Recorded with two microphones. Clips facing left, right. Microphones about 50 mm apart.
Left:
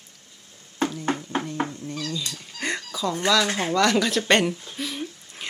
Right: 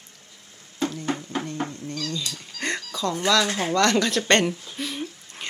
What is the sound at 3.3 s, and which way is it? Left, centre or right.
Speech, centre.